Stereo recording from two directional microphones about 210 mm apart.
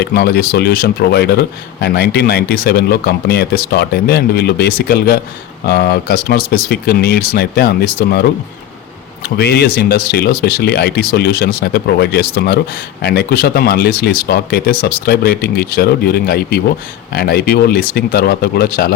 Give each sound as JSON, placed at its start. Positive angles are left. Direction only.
{"t": 0.0, "sound": "speech", "side_deg": 50}